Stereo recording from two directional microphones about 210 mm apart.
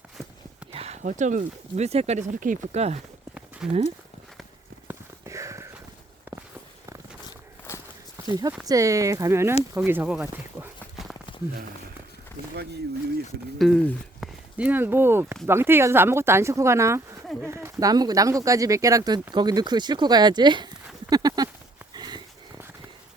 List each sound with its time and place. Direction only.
0.7 s speech: 30° right (ahead or behind)
3.6 s speech: 5° right (ahead or behind)
4.9 s a sound: 15° right (ahead or behind)
7.7 s walk: 10° left (ahead or behind)
8.3 s speech: 20° right (ahead or behind)
9.7 s a sound: 10° right (ahead or behind)
13.6 s speech: centre (ahead or behind); by 20.7 s 20° right (ahead or behind)
21.1 s a sound: 20° right (ahead or behind)
21.9 s dog: 20° right (ahead or behind)